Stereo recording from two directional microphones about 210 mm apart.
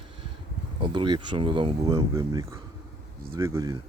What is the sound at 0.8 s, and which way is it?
Speech, 20° right (ahead or behind).